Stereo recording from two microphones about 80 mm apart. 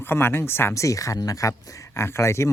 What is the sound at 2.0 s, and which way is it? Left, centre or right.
Speech, left.